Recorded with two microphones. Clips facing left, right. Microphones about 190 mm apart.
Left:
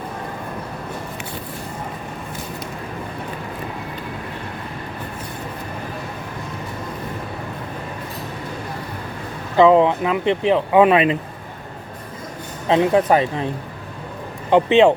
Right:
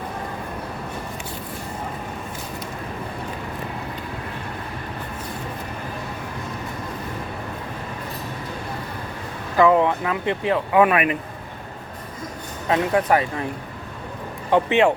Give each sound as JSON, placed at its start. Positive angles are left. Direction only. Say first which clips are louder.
{"t": 9.6, "sound": "speech", "louder": "left 4 dB", "side_deg": 20}
{"t": 12.6, "sound": "speech", "louder": "left 4 dB", "side_deg": 25}
{"t": 14.5, "sound": "speech", "louder": "left 4 dB", "side_deg": 20}